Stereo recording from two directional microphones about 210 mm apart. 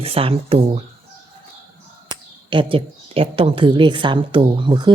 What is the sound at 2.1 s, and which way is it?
Speech, 25° right (ahead or behind).